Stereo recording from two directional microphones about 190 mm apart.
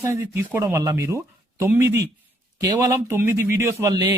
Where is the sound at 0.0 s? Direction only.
15° right (ahead or behind).